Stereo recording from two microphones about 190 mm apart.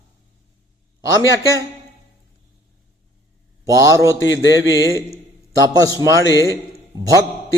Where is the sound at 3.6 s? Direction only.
20° right (ahead or behind).